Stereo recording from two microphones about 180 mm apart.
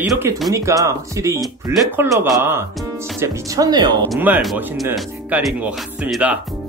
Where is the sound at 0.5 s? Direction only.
15° right (ahead or behind).